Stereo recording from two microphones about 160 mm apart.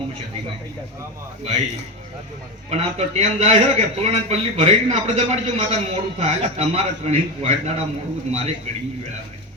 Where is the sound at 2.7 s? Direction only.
40° right (ahead or behind).